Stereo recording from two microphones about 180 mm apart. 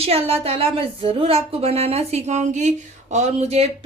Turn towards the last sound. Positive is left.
turn(degrees=-35)  # may be behind; listen again after turning